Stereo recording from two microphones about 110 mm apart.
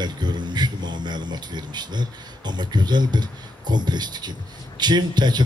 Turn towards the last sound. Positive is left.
turn(degrees=-40)  # may be behind; listen again after turning